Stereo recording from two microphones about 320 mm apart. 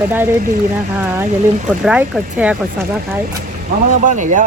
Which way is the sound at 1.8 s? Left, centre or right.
Centre.